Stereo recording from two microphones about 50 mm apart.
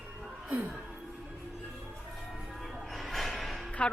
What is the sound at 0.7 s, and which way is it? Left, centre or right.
Music, centre.